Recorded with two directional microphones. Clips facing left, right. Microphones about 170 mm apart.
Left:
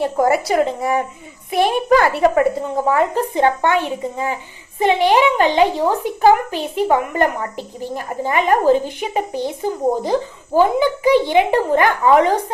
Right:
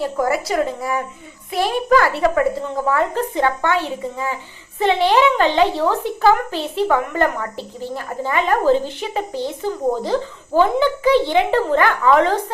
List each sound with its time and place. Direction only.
0.0 s a woman's voice: 25° left (ahead or behind)